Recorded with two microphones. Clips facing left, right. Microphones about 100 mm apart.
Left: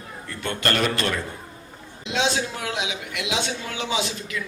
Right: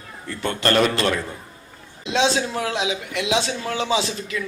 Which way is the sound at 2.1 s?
30° right (ahead or behind).